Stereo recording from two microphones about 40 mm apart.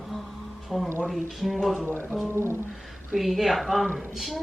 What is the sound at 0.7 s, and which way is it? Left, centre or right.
A woman's voice, centre.